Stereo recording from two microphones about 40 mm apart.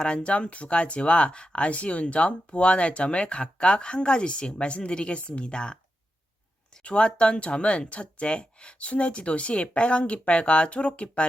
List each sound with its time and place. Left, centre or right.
0.0 s speech: left
6.8 s speech: left